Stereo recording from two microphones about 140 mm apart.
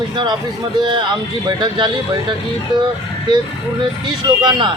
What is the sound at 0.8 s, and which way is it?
Speech, 35° right (ahead or behind).